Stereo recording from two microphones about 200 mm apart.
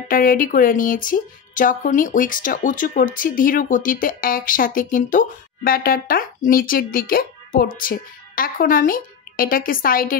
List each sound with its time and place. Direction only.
0.1 s speech: 45° left (ahead or behind)